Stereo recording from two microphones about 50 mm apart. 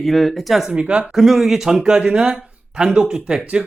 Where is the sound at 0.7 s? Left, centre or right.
Right.